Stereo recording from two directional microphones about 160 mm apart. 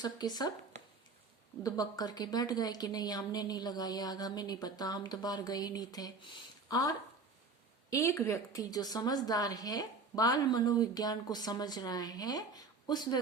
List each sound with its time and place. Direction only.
0.0 s a woman's voice: 25° left (ahead or behind)
1.6 s a woman's voice: 25° left (ahead or behind)